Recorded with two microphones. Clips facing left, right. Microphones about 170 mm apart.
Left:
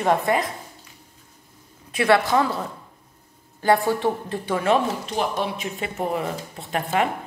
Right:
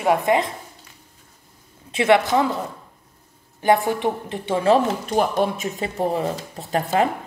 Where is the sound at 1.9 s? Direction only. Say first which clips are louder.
Right 2 dB; 20° right (ahead or behind).